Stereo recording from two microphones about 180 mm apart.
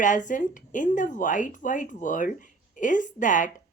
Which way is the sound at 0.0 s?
45° left (ahead or behind).